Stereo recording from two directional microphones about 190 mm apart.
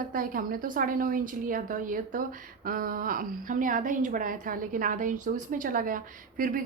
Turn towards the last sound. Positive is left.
turn(degrees=-45)  # may be behind; listen again after turning